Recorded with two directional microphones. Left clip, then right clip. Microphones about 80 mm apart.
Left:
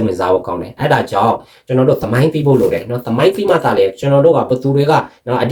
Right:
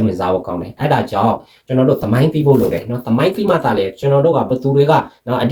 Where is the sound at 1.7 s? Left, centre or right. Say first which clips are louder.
Left 2 dB; centre.